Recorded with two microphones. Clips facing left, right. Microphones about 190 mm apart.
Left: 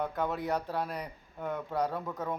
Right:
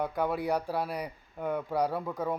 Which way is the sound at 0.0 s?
10° right (ahead or behind).